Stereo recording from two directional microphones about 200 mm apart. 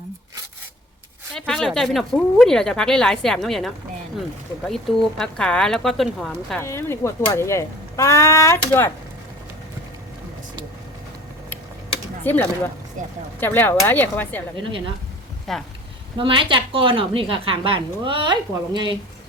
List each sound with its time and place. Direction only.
1.3 s speech: 5° left (ahead or behind)
6.6 s speech: 15° left (ahead or behind)
12.2 s speech: 10° left (ahead or behind)
13.0 s speech: 40° right (ahead or behind)
13.4 s speech: 10° left (ahead or behind)
14.6 s a woman's voice: 25° right (ahead or behind)
15.5 s speech: centre (ahead or behind)
16.1 s a woman's voice: 25° right (ahead or behind)